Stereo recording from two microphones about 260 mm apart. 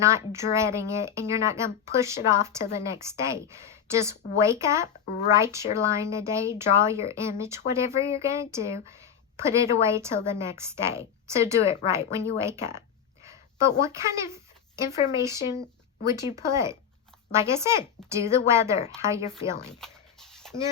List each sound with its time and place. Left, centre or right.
0.0 s a woman's voice: centre
11.6 s a woman's voice: left
11.9 s speech: centre
13.2 s a sound: centre
15.1 s speech: centre
19.8 s a sound: centre